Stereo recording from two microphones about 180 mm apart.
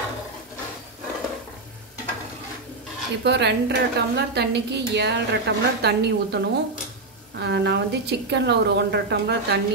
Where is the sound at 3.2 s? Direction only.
70° right (ahead or behind).